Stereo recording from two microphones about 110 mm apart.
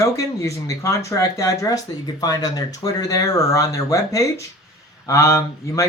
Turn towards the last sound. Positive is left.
turn(degrees=30)  # may be behind; listen again after turning